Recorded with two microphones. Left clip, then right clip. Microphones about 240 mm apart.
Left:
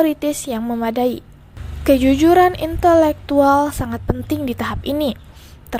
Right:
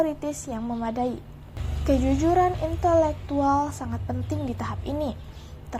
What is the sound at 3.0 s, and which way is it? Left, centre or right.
A woman's voice, left.